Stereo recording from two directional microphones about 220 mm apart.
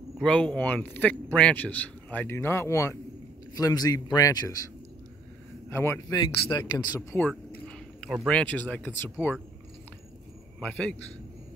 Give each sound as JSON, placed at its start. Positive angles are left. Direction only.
{"t": 0.2, "sound": "a man's voice", "side_deg": 5}
{"t": 5.7, "sound": "a man's voice", "side_deg": 10}
{"t": 7.0, "sound": "speech", "side_deg": 5}
{"t": 10.6, "sound": "a man's voice", "side_deg": 5}